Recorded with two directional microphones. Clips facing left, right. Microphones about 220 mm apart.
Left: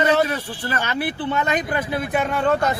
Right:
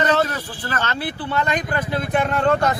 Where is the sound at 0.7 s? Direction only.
15° left (ahead or behind).